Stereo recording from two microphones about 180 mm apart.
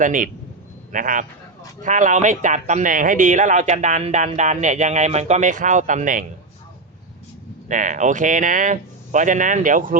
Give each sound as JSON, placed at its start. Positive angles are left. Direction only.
{"t": 0.0, "sound": "speech", "side_deg": -50}
{"t": 7.7, "sound": "speech", "side_deg": -45}